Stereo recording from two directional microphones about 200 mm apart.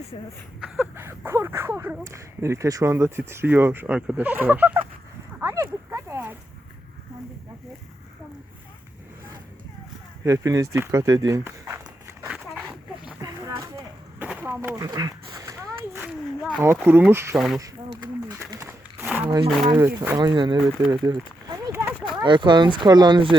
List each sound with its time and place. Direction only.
0.6 s speech: 10° right (ahead or behind)
5.4 s a sound: 10° right (ahead or behind)
10.2 s speech: 15° right (ahead or behind)
13.1 s a sound: 20° right (ahead or behind)
16.6 s speech: 10° right (ahead or behind)
17.3 s speech: centre (ahead or behind)
18.3 s a sound: 10° right (ahead or behind)
20.0 s speech: 15° right (ahead or behind)
22.2 s speech: 25° right (ahead or behind)